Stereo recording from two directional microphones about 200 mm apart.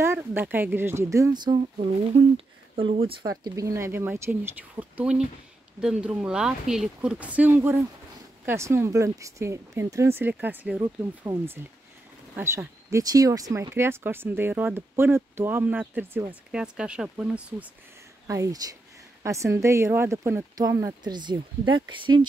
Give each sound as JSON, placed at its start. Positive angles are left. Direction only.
{"t": 0.0, "sound": "speech", "side_deg": -10}
{"t": 18.2, "sound": "speech", "side_deg": -15}